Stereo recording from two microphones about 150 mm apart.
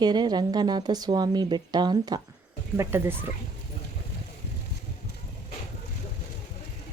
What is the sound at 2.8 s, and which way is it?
Speech, 15° right (ahead or behind).